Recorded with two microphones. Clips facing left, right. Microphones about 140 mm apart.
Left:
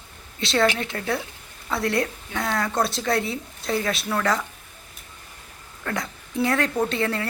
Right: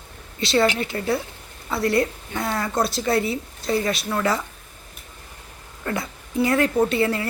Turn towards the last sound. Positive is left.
turn(degrees=-5)  # may be behind; listen again after turning